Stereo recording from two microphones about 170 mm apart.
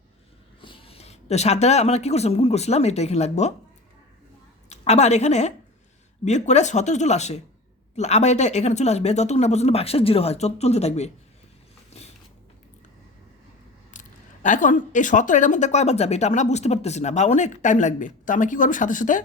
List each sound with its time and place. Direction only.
0.6 s speech: 30° left (ahead or behind)
4.7 s speech: 40° left (ahead or behind)
11.9 s a sound: 40° left (ahead or behind)
13.9 s speech: 50° left (ahead or behind)